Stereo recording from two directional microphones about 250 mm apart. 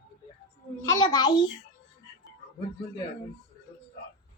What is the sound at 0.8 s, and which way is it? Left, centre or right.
Speech, centre.